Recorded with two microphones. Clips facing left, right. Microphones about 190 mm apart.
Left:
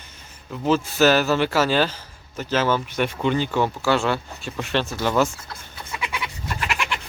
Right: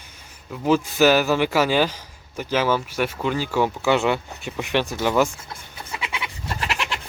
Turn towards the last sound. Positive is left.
turn(degrees=-35)  # may be behind; listen again after turning